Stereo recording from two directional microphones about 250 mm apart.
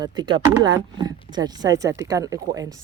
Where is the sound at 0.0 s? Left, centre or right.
Centre.